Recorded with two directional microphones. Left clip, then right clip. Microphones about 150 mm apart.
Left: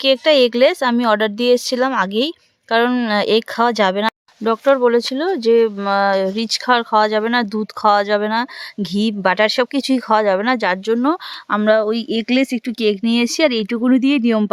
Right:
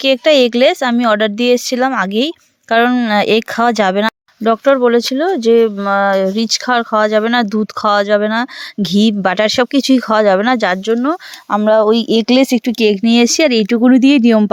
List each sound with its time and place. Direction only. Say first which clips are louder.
0.0 s speech: right 3 dB; 20° right (ahead or behind)
3.2 s speech: right 2 dB; 20° right (ahead or behind)
10.9 s speech: right 2 dB; 15° right (ahead or behind)
11.8 s speech: right 7 dB; 30° right (ahead or behind)